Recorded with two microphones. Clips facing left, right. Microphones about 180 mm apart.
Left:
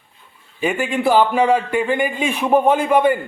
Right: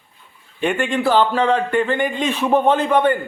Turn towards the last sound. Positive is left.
turn(degrees=10)  # may be behind; listen again after turning